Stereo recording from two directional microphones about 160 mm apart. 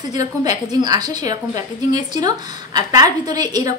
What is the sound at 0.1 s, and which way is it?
A woman's voice, 20° right (ahead or behind).